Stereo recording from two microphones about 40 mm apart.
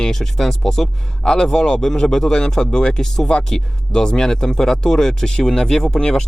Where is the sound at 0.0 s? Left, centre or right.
Centre.